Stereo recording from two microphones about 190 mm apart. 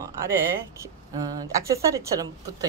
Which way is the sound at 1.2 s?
20° right (ahead or behind).